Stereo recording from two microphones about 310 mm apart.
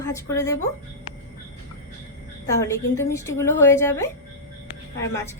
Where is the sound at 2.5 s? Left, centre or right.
Centre.